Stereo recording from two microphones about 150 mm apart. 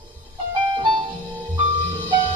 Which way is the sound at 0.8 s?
30° right (ahead or behind).